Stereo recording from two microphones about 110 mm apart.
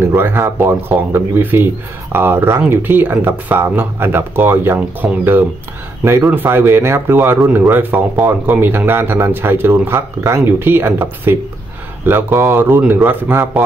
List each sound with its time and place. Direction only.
0.0 s speech: 20° right (ahead or behind)